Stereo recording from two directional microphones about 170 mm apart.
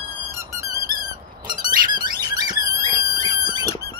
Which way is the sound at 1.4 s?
25° right (ahead or behind).